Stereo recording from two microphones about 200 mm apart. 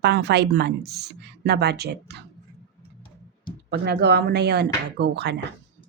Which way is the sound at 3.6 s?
55° right (ahead or behind).